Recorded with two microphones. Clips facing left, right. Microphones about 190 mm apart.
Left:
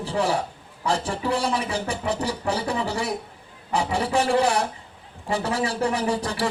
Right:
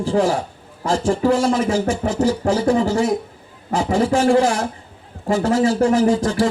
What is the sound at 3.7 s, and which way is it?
Speech, 65° left (ahead or behind).